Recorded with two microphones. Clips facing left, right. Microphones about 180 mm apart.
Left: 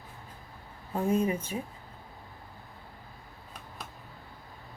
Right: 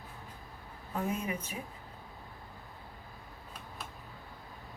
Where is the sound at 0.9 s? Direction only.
30° left (ahead or behind).